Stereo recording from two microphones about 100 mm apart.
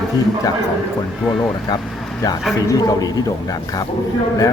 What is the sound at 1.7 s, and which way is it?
Vehicle, 45° left (ahead or behind).